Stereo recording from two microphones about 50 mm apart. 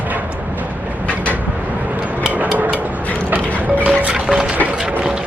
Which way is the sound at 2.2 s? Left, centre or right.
Right.